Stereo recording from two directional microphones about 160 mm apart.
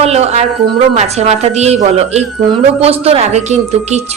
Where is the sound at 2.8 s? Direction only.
40° right (ahead or behind).